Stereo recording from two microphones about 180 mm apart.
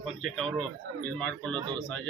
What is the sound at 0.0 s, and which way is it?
A man's voice, 5° left (ahead or behind).